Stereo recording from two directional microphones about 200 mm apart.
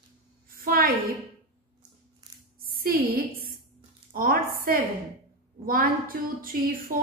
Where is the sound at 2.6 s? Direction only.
45° right (ahead or behind).